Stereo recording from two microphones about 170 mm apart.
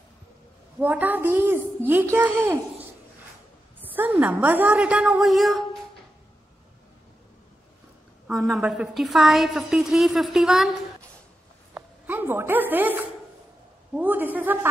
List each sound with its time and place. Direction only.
0.7 s a woman's voice: 10° right (ahead or behind)
3.9 s a woman's voice: 10° right (ahead or behind)
8.3 s a woman's voice: centre (ahead or behind)
11.7 s a sound: 15° right (ahead or behind)
13.9 s a woman's voice: 10° right (ahead or behind)